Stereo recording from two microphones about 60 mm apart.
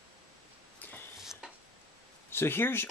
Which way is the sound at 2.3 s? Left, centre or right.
Left.